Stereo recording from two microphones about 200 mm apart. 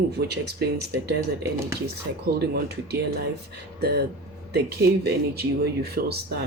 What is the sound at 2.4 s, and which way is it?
Speech, 55° right (ahead or behind).